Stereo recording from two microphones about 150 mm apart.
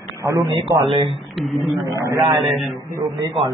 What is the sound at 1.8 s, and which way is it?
Speech, 20° right (ahead or behind).